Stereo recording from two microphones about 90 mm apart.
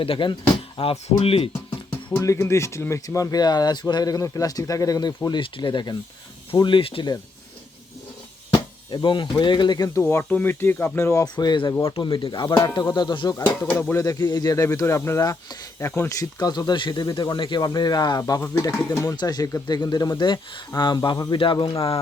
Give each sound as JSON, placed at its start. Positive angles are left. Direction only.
{"t": 0.0, "sound": "speech", "side_deg": 75}
{"t": 0.8, "sound": "speech", "side_deg": 90}
{"t": 2.2, "sound": "speech", "side_deg": 35}
{"t": 3.3, "sound": "speech", "side_deg": 45}
{"t": 5.4, "sound": "speech", "side_deg": 65}
{"t": 6.6, "sound": "speech", "side_deg": 70}
{"t": 8.9, "sound": "speech", "side_deg": 60}
{"t": 9.7, "sound": "speech", "side_deg": 40}
{"t": 10.0, "sound": "speech", "side_deg": 30}
{"t": 11.9, "sound": "speech", "side_deg": 75}
{"t": 13.9, "sound": "speech", "side_deg": 35}
{"t": 14.5, "sound": "speech", "side_deg": 35}
{"t": 15.2, "sound": "speech", "side_deg": 45}
{"t": 18.2, "sound": "speech", "side_deg": 40}